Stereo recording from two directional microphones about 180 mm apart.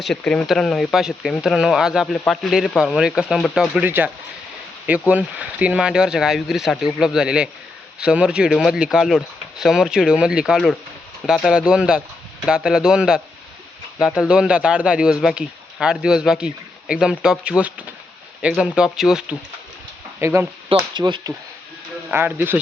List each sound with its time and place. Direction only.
0.0 s speech: 5° left (ahead or behind)
20.1 s speech: 15° right (ahead or behind)
22.1 s speech: 10° right (ahead or behind)